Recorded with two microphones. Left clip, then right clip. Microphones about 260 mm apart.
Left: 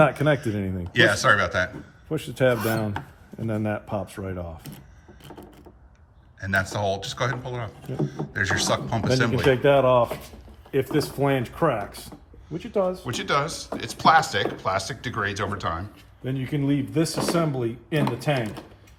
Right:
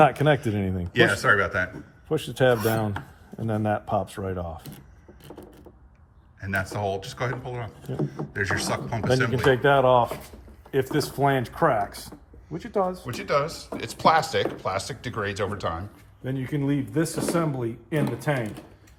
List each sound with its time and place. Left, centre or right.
0.0 s speech: right
0.9 s speech: centre
2.0 s speech: right
6.4 s speech: centre
9.4 s speech: centre
13.1 s speech: centre
16.2 s speech: centre
16.9 s speech: centre